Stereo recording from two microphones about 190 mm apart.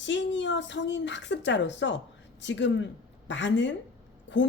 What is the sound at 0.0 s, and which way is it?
Speech, 70° left (ahead or behind).